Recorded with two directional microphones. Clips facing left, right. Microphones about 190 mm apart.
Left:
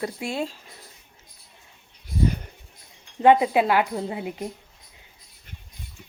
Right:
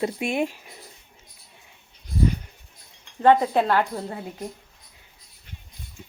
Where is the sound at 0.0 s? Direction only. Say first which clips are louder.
Right 4 dB; 20° right (ahead or behind).